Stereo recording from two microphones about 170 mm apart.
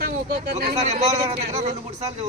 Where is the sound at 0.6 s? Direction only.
40° right (ahead or behind).